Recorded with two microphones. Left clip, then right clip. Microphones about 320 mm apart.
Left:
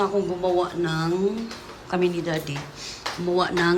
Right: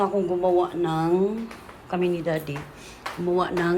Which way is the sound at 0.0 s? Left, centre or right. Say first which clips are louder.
Right 1 dB; centre.